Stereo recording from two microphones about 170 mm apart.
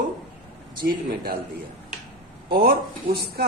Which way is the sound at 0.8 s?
60° right (ahead or behind).